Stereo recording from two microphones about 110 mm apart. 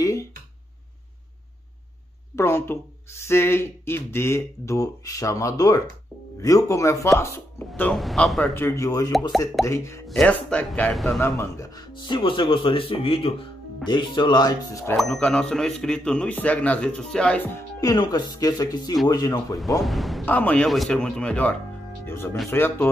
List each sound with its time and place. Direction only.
0.0 s a sound: 30° left (ahead or behind)
2.3 s speech: 20° left (ahead or behind)
7.9 s speech: centre (ahead or behind)
8.5 s speech: 25° left (ahead or behind)
10.2 s speech: 10° left (ahead or behind)
11.1 s speech: 25° left (ahead or behind)
12.0 s speech: 45° left (ahead or behind)
13.8 s speech: 45° left (ahead or behind)
15.0 s speech: 10° left (ahead or behind)
17.5 s speech: 25° left (ahead or behind)
19.8 s speech: centre (ahead or behind)
20.2 s speech: 15° left (ahead or behind)
22.0 s speech: 20° left (ahead or behind)